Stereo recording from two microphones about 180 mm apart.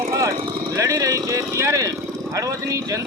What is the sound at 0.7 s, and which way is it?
Speech, 20° right (ahead or behind).